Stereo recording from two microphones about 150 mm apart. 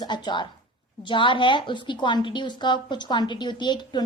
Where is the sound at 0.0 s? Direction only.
30° left (ahead or behind).